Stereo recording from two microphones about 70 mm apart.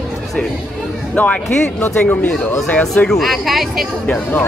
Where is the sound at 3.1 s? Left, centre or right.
Centre.